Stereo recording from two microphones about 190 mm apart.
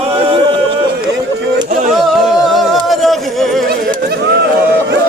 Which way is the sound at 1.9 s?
Centre (ahead or behind).